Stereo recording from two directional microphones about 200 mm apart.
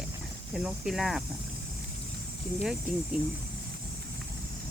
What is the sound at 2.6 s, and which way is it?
Speech, 5° right (ahead or behind).